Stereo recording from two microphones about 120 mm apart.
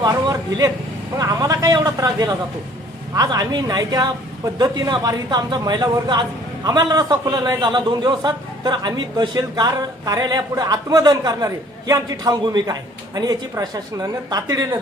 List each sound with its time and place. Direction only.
0.0 s a man's voice: 35° right (ahead or behind)